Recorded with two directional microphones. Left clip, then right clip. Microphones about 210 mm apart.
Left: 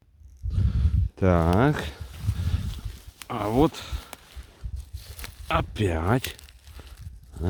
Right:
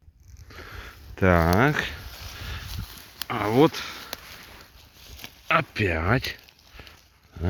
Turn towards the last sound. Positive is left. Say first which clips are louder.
# right 4 dB
turn(degrees=20)  # may be behind; listen again after turning